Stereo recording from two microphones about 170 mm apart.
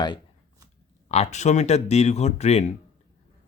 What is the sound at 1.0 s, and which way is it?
Speech, 40° left (ahead or behind).